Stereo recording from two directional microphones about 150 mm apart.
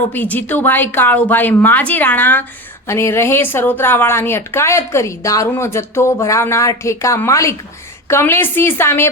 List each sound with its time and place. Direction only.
0.1 s a woman's voice: 10° left (ahead or behind)